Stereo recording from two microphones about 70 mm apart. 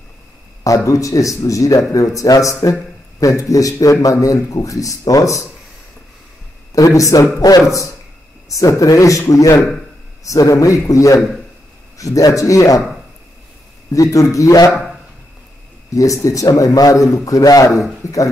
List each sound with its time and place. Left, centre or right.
0.7 s speech: left
6.7 s speech: left
8.5 s speech: left
13.9 s speech: left
15.9 s speech: left